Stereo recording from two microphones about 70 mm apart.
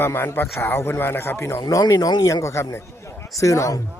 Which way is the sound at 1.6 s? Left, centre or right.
Left.